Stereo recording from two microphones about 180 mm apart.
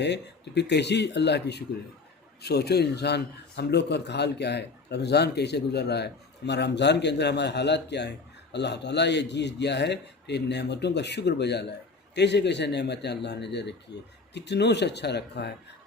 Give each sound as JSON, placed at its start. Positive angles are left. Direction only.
{"t": 0.0, "sound": "speech", "side_deg": 70}